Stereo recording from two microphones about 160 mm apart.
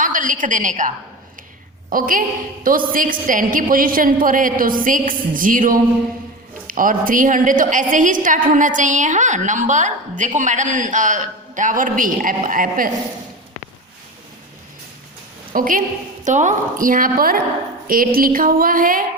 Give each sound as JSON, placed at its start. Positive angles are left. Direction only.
{"t": 0.0, "sound": "a woman's voice", "side_deg": -55}
{"t": 15.5, "sound": "a woman's voice", "side_deg": -55}